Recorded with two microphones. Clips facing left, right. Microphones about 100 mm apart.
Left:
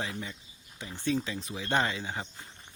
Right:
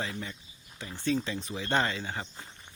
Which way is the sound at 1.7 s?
15° left (ahead or behind).